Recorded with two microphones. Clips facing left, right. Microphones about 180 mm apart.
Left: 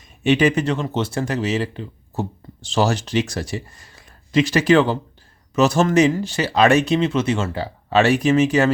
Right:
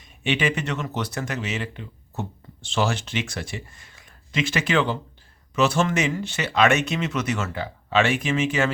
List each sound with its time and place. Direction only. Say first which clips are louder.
0.2 s speech: left 8 dB; 40° left (ahead or behind)